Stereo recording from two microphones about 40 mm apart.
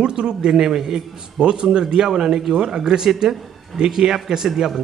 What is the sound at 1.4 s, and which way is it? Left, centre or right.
Speech, right.